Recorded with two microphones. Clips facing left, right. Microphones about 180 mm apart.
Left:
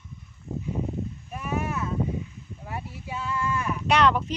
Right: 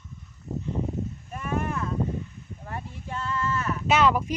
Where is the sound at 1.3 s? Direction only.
5° left (ahead or behind).